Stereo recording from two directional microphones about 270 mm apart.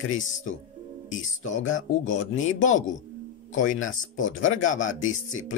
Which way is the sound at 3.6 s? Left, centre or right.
Left.